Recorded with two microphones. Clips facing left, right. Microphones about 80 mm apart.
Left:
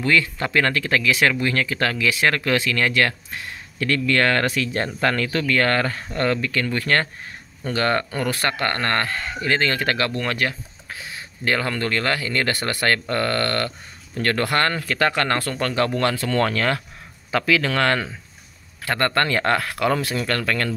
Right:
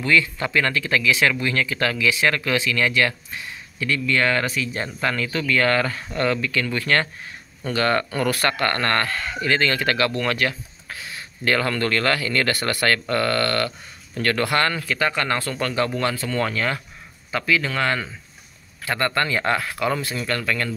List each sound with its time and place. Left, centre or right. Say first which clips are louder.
0.0 s speech: even; left
5.5 s speech: right 1 dB; left
17.3 s speech: left 2 dB; left